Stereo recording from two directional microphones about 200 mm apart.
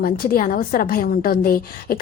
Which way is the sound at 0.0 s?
50° left (ahead or behind).